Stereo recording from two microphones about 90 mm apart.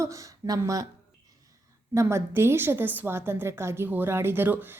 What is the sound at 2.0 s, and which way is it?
A woman's voice, 30° right (ahead or behind).